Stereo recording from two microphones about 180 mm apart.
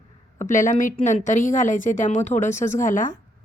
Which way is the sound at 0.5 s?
45° left (ahead or behind).